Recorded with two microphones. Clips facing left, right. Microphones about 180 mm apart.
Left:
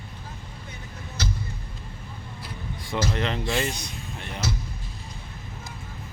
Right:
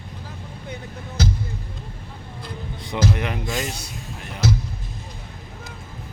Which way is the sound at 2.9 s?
10° right (ahead or behind).